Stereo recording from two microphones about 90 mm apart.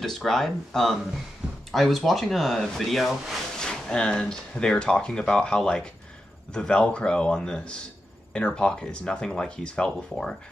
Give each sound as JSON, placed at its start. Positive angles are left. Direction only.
{"t": 0.0, "sound": "speech", "side_deg": 5}